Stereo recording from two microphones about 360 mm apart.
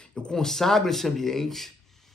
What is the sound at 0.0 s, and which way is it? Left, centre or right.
Speech, centre.